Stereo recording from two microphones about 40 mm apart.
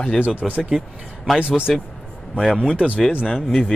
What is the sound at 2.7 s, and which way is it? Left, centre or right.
Speech, right.